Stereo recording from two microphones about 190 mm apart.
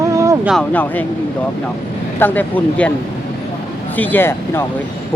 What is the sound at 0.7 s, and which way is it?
Speech, 10° left (ahead or behind).